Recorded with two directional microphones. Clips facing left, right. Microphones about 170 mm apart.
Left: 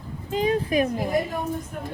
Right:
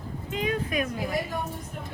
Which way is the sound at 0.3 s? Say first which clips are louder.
Left 6 dB; 35° left (ahead or behind).